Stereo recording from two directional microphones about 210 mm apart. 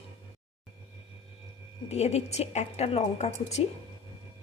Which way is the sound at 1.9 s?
30° left (ahead or behind).